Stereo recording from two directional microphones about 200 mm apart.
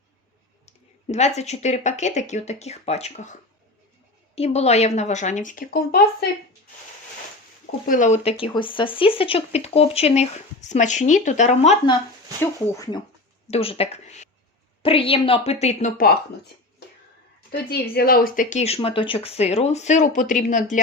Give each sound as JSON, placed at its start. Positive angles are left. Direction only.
{"t": 0.6, "sound": "speech", "side_deg": 35}
{"t": 4.4, "sound": "speech", "side_deg": 30}
{"t": 7.9, "sound": "speech", "side_deg": 40}
{"t": 12.4, "sound": "speech", "side_deg": 15}
{"t": 13.5, "sound": "speech", "side_deg": 30}
{"t": 17.5, "sound": "speech", "side_deg": 50}